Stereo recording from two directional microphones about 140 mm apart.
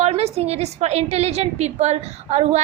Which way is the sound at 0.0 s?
50° right (ahead or behind).